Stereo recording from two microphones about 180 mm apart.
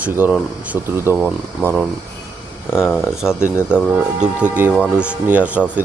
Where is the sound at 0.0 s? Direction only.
5° right (ahead or behind).